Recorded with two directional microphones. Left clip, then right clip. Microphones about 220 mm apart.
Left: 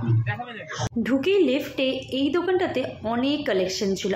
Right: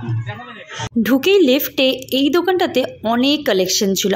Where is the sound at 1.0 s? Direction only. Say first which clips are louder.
Right 8 dB; 45° right (ahead or behind).